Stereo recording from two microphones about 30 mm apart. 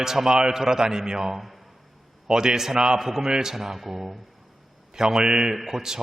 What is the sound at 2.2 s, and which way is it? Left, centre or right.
A man's voice, right.